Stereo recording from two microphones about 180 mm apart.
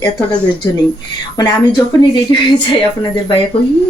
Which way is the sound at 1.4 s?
25° left (ahead or behind).